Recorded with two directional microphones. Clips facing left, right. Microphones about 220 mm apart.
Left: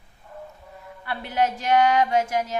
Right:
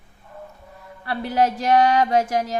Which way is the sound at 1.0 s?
35° right (ahead or behind).